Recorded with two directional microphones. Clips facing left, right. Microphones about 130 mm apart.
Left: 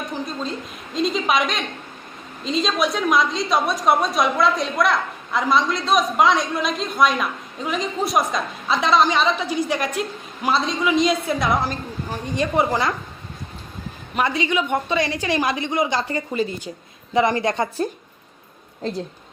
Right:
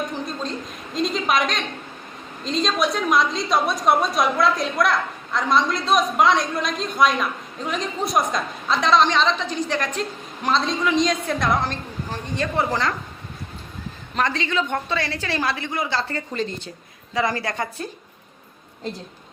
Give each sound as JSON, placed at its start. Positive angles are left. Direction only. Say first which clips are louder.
{"t": 0.1, "sound": "a sound", "louder": "left 1 dB", "side_deg": 0}
{"t": 0.9, "sound": "a woman's voice", "louder": "left 1 dB", "side_deg": 0}
{"t": 14.2, "sound": "a woman's voice", "louder": "left 2 dB", "side_deg": 10}
{"t": 17.2, "sound": "a woman's voice", "louder": "left 5 dB", "side_deg": 20}